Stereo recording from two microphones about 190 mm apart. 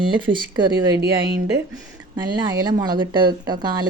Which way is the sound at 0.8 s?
10° right (ahead or behind).